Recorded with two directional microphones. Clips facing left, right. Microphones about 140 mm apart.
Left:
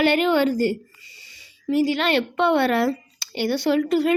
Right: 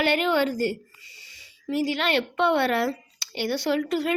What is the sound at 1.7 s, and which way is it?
A woman's voice, 30° left (ahead or behind).